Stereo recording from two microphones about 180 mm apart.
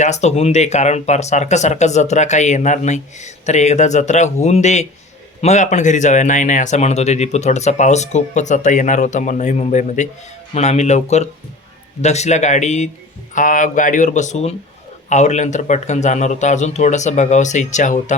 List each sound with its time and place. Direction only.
0.0 s speech: 40° left (ahead or behind)